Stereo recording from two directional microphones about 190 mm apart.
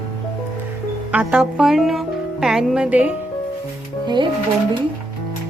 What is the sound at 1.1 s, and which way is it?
Speech, 5° right (ahead or behind).